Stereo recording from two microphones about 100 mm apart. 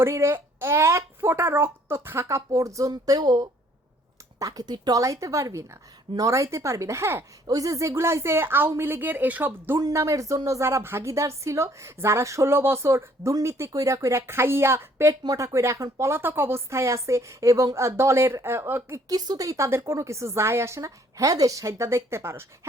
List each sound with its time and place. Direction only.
0.0 s speech: 25° right (ahead or behind)
7.4 s speech: 35° right (ahead or behind); by 9.5 s 15° right (ahead or behind)
9.7 s speech: 35° right (ahead or behind)